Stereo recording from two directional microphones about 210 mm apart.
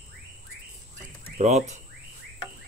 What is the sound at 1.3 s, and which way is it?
Speech, 35° right (ahead or behind).